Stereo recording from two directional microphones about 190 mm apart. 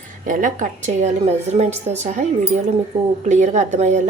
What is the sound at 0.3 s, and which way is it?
A woman's voice, 45° right (ahead or behind).